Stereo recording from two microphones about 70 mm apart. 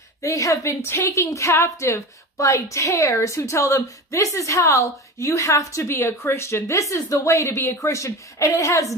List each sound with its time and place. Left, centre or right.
0.2 s a woman's voice: left